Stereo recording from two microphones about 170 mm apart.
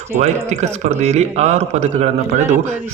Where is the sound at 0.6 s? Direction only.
40° right (ahead or behind).